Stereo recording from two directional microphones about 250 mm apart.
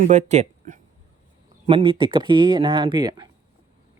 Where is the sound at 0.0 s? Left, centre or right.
Right.